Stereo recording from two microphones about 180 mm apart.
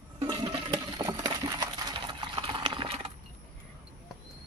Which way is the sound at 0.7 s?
20° right (ahead or behind).